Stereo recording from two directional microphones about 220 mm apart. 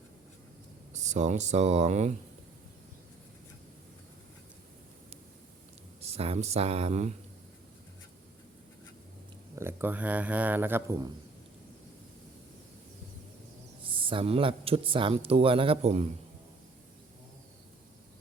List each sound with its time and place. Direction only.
0.9 s speech: 30° right (ahead or behind)
6.0 s speech: 30° right (ahead or behind)
9.6 s a man's voice: 10° right (ahead or behind)
13.8 s speech: 25° right (ahead or behind)